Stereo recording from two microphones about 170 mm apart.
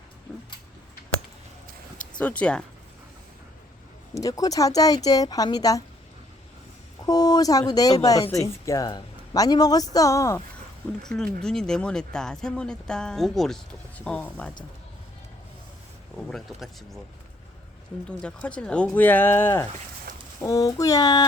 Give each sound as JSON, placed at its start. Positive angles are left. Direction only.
{"t": 0.3, "sound": "speech", "side_deg": 5}
{"t": 2.1, "sound": "speech", "side_deg": 5}
{"t": 4.1, "sound": "speech", "side_deg": 20}
{"t": 7.0, "sound": "speech", "side_deg": 20}
{"t": 11.0, "sound": "speech", "side_deg": 5}
{"t": 16.1, "sound": "speech", "side_deg": 0}
{"t": 18.2, "sound": "speech", "side_deg": 5}